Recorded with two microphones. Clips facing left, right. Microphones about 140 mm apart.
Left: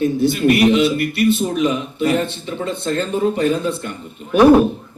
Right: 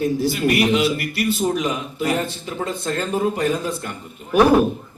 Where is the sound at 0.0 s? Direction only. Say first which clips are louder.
Left 4 dB; 25° left (ahead or behind).